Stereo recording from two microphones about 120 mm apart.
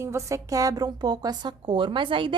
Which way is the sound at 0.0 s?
25° right (ahead or behind).